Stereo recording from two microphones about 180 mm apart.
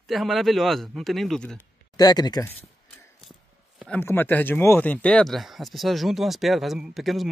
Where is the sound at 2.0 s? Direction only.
20° left (ahead or behind).